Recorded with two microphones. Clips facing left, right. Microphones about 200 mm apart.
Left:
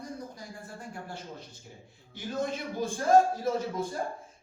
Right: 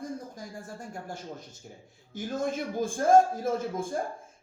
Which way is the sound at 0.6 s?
45° right (ahead or behind).